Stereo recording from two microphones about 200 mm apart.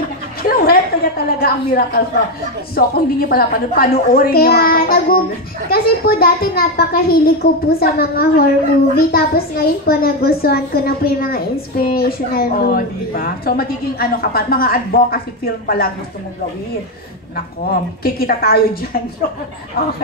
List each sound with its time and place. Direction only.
0.4 s a woman's voice: 50° left (ahead or behind)
17.6 s a woman's voice: 50° left (ahead or behind)